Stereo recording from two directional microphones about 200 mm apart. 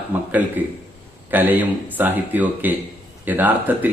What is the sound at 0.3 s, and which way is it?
A man's voice, 10° right (ahead or behind).